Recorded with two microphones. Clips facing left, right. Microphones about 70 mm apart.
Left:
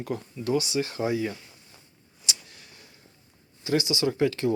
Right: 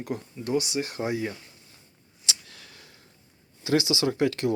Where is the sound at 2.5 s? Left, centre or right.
Right.